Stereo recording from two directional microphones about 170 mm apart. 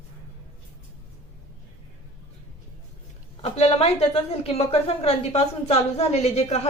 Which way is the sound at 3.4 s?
35° left (ahead or behind).